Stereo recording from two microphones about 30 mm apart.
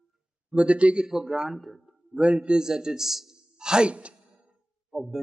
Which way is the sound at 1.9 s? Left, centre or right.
Right.